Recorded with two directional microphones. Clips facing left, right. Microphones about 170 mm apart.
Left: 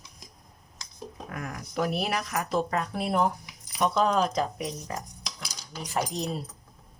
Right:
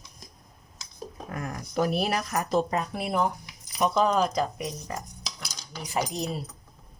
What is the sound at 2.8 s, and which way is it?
Speech, 5° right (ahead or behind).